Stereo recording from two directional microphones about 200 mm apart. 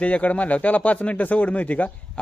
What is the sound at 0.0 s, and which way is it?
A man's voice, 5° left (ahead or behind).